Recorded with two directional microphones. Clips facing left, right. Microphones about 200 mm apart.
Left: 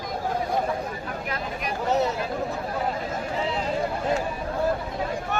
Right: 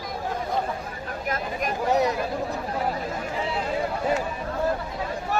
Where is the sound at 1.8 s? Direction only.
15° right (ahead or behind).